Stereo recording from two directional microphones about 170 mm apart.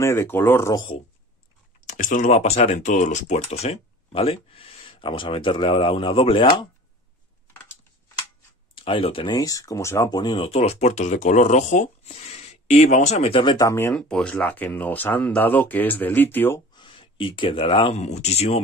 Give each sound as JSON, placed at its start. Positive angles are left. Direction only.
{"t": 0.0, "sound": "speech", "side_deg": 15}
{"t": 1.9, "sound": "speech", "side_deg": 50}
{"t": 8.7, "sound": "speech", "side_deg": 30}
{"t": 13.6, "sound": "speech", "side_deg": 15}
{"t": 16.7, "sound": "speech", "side_deg": 30}